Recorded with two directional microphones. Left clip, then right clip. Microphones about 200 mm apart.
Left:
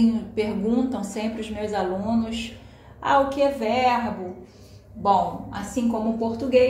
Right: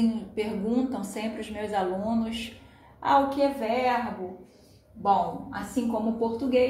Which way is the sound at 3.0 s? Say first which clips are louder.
Left 3 dB; 15° right (ahead or behind).